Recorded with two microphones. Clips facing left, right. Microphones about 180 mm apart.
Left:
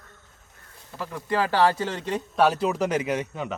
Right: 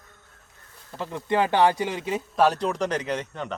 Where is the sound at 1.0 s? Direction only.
20° right (ahead or behind).